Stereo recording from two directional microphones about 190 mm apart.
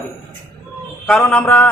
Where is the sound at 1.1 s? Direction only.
5° left (ahead or behind).